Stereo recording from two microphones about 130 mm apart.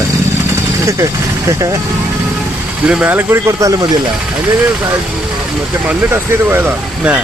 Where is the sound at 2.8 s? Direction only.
10° right (ahead or behind).